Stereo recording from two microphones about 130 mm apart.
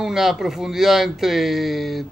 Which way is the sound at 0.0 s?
5° right (ahead or behind).